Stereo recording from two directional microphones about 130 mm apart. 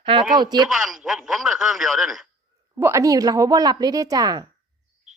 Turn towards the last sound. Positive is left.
turn(degrees=-30)  # may be behind; listen again after turning